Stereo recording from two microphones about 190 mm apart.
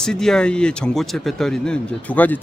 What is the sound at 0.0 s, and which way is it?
Speech, 5° left (ahead or behind).